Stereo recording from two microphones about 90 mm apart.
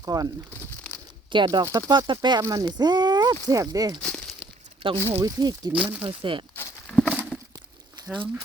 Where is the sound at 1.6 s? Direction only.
40° right (ahead or behind).